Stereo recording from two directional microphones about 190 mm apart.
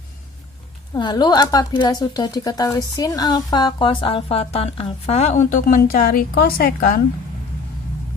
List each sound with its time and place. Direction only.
0.9 s a woman's voice: 20° left (ahead or behind); by 6.7 s 55° left (ahead or behind)